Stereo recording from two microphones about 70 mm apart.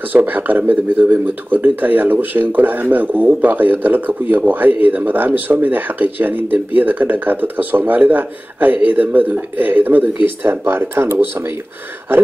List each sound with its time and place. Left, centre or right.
0.1 s speech: right